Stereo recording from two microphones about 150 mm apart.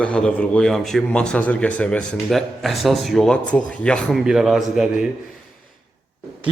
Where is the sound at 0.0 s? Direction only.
5° left (ahead or behind).